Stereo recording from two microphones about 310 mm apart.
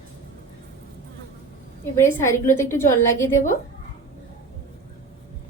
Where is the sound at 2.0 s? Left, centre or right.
Centre.